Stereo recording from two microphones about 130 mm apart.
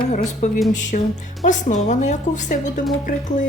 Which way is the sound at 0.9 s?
75° left (ahead or behind).